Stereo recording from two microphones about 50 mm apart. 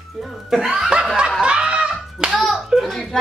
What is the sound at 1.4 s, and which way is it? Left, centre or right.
Snicker, centre.